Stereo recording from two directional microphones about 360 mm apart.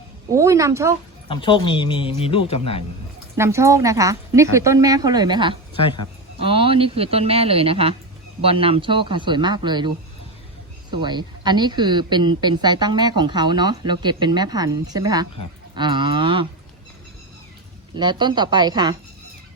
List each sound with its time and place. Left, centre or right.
0.3 s speech: centre
1.3 s a man's voice: centre
3.3 s speech: centre
5.8 s a man's voice: centre
6.4 s speech: centre
10.9 s speech: centre
17.9 s speech: centre